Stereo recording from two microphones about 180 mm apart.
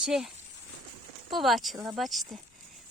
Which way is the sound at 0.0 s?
Centre (ahead or behind).